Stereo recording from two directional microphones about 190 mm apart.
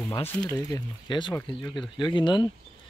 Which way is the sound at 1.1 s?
25° left (ahead or behind).